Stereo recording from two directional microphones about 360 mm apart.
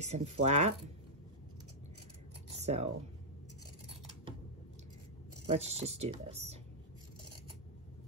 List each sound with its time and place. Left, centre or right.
0.0 s speech: centre
2.5 s a sound: centre
5.5 s speech: centre